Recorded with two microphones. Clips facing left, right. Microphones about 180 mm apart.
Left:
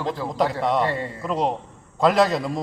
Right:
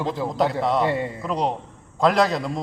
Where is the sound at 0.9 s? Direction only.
15° right (ahead or behind).